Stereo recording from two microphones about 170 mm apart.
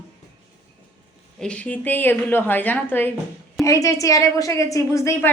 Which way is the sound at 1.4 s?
5° left (ahead or behind).